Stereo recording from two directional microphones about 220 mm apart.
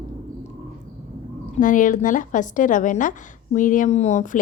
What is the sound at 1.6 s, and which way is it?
Speech, 35° left (ahead or behind).